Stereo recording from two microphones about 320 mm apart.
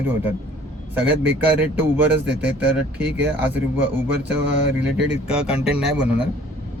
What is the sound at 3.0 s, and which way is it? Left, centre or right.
Speech, right.